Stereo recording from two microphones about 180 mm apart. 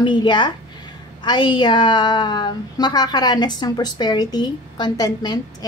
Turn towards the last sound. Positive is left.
turn(degrees=20)  # may be behind; listen again after turning